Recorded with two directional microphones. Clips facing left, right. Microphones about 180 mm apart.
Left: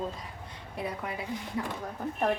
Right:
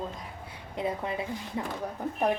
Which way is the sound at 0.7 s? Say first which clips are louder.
Right 4 dB; 25° right (ahead or behind).